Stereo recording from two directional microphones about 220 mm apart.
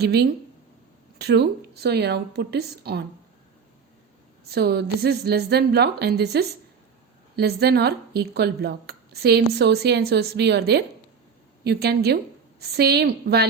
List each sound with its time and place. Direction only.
0.0 s speech: 45° right (ahead or behind)
4.4 s speech: 45° right (ahead or behind)